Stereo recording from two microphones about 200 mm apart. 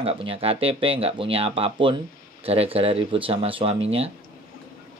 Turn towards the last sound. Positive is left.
turn(degrees=-30)  # may be behind; listen again after turning